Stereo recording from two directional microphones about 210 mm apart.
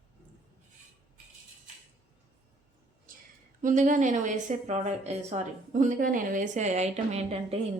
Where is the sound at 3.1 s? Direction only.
40° right (ahead or behind).